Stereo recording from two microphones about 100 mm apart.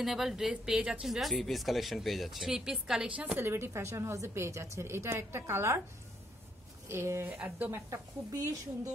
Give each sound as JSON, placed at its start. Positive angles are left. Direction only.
{"t": 0.0, "sound": "speech", "side_deg": -5}
{"t": 3.3, "sound": "a woman's voice", "side_deg": -25}
{"t": 6.9, "sound": "a woman's voice", "side_deg": -25}
{"t": 7.9, "sound": "speech", "side_deg": -35}